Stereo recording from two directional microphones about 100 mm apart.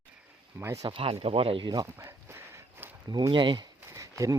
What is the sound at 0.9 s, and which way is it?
Speech, 70° right (ahead or behind).